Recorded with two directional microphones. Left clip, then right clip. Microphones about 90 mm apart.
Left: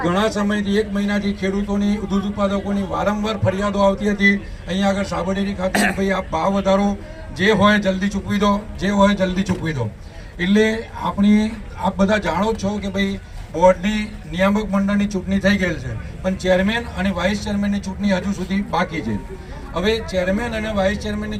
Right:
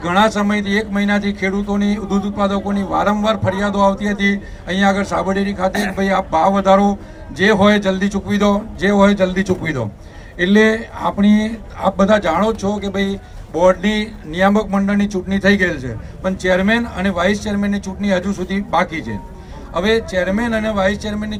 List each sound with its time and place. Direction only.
0.0 s a man's voice: 40° right (ahead or behind)
5.7 s a man's voice: 15° left (ahead or behind)
6.0 s a man's voice: 35° right (ahead or behind)
11.0 s a man's voice: 35° right (ahead or behind)